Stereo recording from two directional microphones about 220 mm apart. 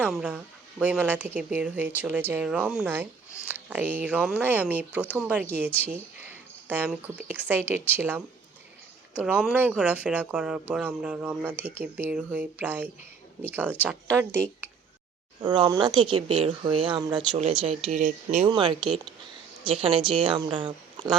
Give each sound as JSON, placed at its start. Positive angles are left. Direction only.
{"t": 0.0, "sound": "speech", "side_deg": -5}